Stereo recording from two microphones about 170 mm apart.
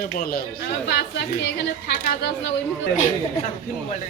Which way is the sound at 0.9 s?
85° left.